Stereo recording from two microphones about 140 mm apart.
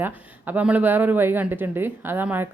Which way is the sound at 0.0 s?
15° right (ahead or behind).